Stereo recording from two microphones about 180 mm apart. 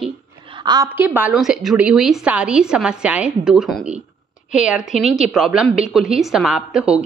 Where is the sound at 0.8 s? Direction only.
10° right (ahead or behind).